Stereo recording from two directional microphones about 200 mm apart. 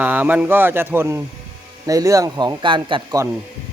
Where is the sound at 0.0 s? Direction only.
10° right (ahead or behind).